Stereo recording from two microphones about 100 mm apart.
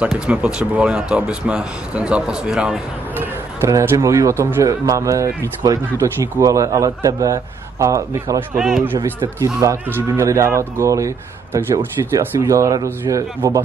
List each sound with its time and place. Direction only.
0.3 s speech: 10° right (ahead or behind)
3.2 s speech: 25° right (ahead or behind)
8.5 s speech: centre (ahead or behind)
9.4 s speech: 30° right (ahead or behind)